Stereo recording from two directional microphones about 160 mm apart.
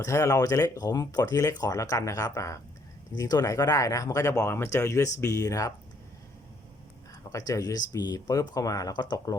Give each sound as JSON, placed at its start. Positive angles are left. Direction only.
{"t": 0.0, "sound": "speech", "side_deg": 20}
{"t": 7.3, "sound": "speech", "side_deg": 20}